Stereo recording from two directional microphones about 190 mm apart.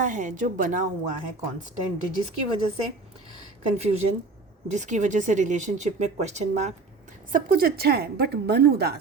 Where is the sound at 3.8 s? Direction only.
35° right (ahead or behind).